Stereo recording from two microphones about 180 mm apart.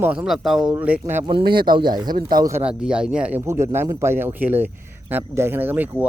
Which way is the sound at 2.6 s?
5° right (ahead or behind).